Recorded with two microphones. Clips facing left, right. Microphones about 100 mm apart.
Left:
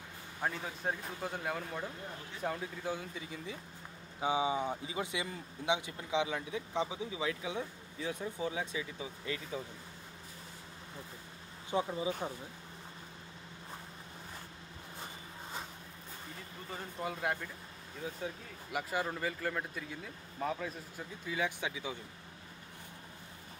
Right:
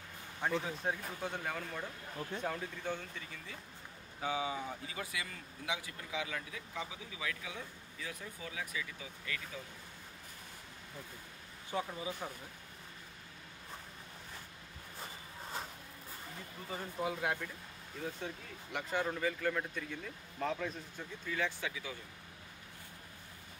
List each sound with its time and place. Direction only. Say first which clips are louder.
0.4 s speech: right 2 dB; 5° left (ahead or behind); by 9.6 s 25° left (ahead or behind)
11.7 s speech: left 5 dB; 20° left (ahead or behind)
16.7 s speech: right 2 dB; centre (ahead or behind); by 21.9 s 20° left (ahead or behind)